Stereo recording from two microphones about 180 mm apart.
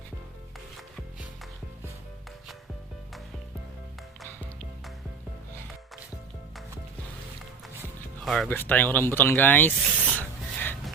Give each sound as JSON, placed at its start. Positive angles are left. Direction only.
{"t": 8.2, "sound": "speech", "side_deg": 0}